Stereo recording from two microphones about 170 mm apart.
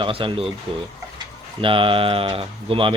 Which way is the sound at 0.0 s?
30° right (ahead or behind).